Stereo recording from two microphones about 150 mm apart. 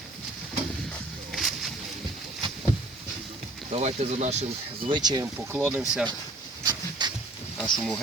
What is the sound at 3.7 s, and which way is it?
Speech, 45° right (ahead or behind).